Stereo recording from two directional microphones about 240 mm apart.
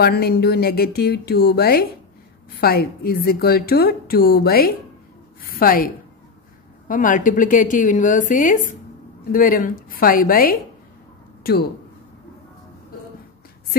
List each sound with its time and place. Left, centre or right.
0.0 s a woman's voice: left
6.9 s a woman's voice: left